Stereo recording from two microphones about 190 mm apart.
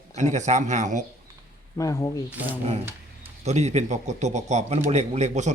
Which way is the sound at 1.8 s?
15° left (ahead or behind).